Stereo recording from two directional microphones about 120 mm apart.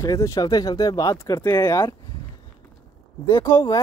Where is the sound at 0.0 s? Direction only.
25° left (ahead or behind).